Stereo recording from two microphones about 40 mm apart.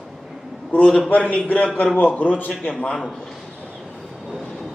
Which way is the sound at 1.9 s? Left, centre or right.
Left.